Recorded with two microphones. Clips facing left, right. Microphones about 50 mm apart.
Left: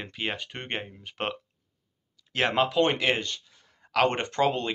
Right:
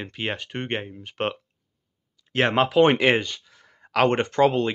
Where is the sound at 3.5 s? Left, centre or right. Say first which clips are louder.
Right 6 dB; right.